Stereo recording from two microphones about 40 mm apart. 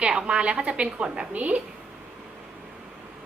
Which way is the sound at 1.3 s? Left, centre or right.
Right.